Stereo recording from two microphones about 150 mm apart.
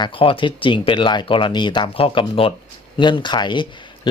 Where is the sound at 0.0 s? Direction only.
35° left (ahead or behind).